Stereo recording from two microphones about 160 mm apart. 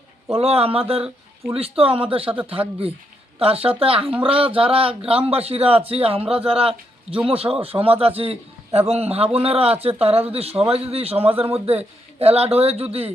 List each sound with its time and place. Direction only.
0.3 s speech: 40° right (ahead or behind)